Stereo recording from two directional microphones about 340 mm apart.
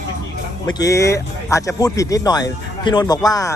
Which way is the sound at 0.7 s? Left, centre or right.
Centre.